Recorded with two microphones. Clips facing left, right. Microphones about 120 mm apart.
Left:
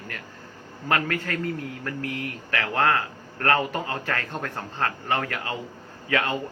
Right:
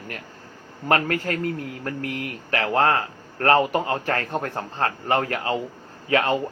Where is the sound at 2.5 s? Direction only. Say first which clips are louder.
Right 3 dB; 30° right (ahead or behind).